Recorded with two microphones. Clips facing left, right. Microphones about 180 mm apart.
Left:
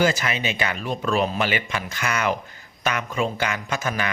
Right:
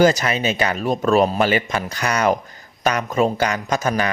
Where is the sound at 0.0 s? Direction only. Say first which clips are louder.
Right 6 dB; 40° right (ahead or behind).